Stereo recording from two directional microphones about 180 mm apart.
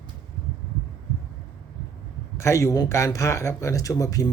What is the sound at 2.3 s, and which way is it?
Speech, 15° left (ahead or behind).